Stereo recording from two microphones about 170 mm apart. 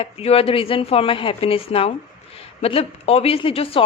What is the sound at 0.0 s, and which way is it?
A woman's voice, 35° left (ahead or behind).